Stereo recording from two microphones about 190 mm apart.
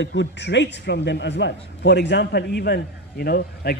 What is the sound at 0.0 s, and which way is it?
A man's voice, 65° left (ahead or behind).